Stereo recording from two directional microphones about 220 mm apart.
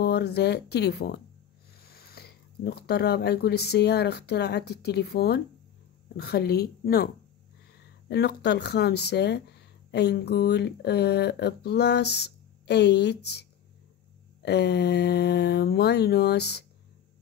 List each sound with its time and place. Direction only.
0.0 s speech: 50° left (ahead or behind)